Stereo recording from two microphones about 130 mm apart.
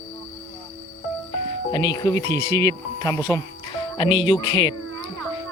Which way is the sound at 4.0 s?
40° left (ahead or behind).